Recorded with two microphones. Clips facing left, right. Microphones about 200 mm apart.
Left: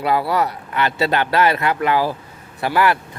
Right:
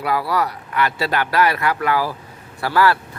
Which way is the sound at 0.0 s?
25° left (ahead or behind).